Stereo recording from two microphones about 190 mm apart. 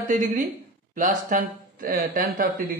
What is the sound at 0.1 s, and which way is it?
Speech, 45° right (ahead or behind).